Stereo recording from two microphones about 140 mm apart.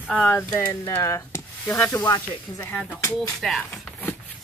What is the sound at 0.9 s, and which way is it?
Speech, 20° left (ahead or behind).